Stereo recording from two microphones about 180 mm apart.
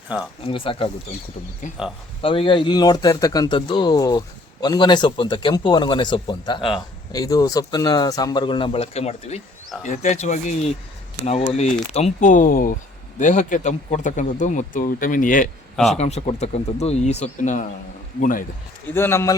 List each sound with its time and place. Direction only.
0.1 s speech: 10° right (ahead or behind)
0.4 s speech: 30° left (ahead or behind)
1.6 s speech: 45° left (ahead or behind)
2.2 s speech: 30° left (ahead or behind)
6.6 s speech: centre (ahead or behind)
7.1 s speech: 20° left (ahead or behind); by 15.4 s 50° left (ahead or behind)
15.7 s speech: centre (ahead or behind)
16.0 s speech: 35° left (ahead or behind)
18.9 s speech: 15° left (ahead or behind)